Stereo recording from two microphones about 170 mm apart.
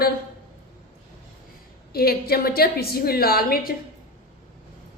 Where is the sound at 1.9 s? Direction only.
65° left (ahead or behind).